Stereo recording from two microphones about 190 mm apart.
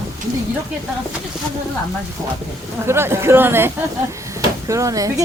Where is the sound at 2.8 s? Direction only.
15° right (ahead or behind).